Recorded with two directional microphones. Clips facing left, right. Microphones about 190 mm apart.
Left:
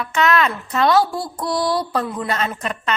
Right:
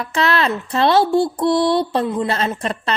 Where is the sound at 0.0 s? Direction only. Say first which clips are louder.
Even; 35° right (ahead or behind).